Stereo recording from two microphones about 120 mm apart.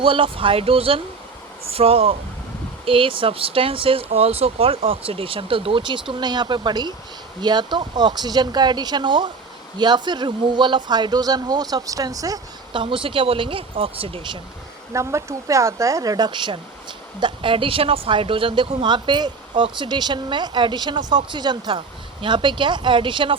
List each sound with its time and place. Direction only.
0.0 s speech: 45° right (ahead or behind); by 12.4 s 30° right (ahead or behind)
12.7 s speech: 45° right (ahead or behind)
14.9 s speech: 25° right (ahead or behind); by 23.3 s 45° right (ahead or behind)